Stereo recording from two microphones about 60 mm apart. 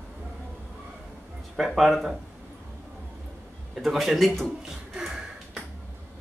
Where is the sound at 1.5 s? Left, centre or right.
Centre.